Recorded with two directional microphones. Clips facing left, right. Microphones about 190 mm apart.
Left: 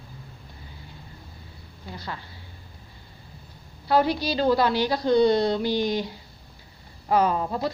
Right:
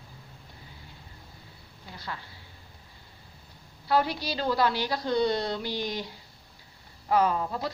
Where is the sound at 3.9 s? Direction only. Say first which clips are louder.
Left 5 dB; 25° left (ahead or behind).